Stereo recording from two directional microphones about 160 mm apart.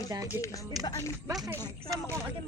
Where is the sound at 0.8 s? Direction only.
20° left (ahead or behind).